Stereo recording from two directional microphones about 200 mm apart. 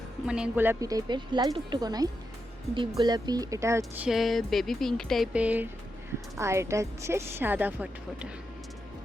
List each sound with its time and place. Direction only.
0.3 s a woman's voice: 5° right (ahead or behind)
4.1 s music: centre (ahead or behind)
6.3 s a woman's voice: 15° right (ahead or behind)